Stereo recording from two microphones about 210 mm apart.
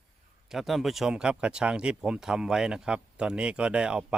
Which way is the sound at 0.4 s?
Centre (ahead or behind).